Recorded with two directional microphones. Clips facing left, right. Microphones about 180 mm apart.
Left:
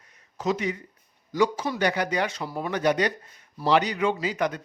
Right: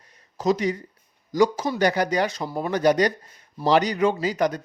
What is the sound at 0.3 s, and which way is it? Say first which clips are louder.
A man's voice: right 4 dB; 35° right (ahead or behind).